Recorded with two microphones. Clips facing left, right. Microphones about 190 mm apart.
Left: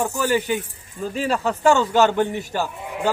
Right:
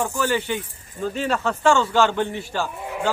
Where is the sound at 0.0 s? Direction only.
10° left (ahead or behind).